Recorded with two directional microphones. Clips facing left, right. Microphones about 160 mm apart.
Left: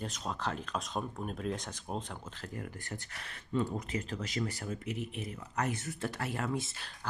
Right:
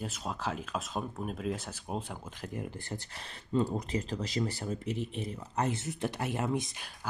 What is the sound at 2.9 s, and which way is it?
Speech, 30° right (ahead or behind).